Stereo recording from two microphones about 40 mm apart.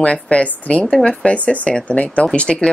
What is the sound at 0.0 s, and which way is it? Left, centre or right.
Speech, left.